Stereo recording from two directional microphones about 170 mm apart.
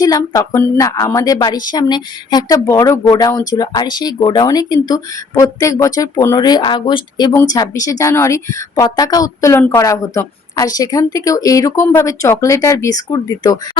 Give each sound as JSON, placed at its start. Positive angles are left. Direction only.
{"t": 0.0, "sound": "a woman's voice", "side_deg": 20}